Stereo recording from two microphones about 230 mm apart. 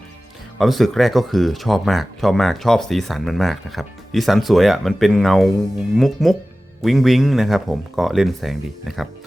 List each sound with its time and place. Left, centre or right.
0.6 s speech: centre